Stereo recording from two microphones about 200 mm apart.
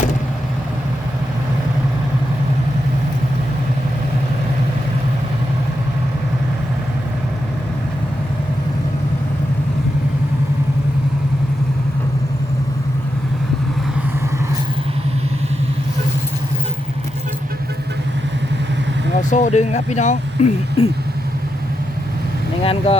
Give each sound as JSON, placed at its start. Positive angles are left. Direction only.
{"t": 19.3, "sound": "speech", "side_deg": 35}
{"t": 22.6, "sound": "speech", "side_deg": 30}